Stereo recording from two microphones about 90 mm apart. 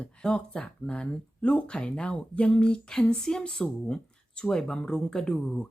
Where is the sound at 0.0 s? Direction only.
15° left (ahead or behind).